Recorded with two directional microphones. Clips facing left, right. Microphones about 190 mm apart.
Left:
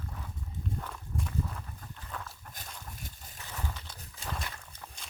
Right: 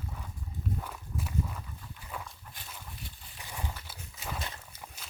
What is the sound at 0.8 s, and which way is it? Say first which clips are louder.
Walk: left 1 dB; 5° right (ahead or behind).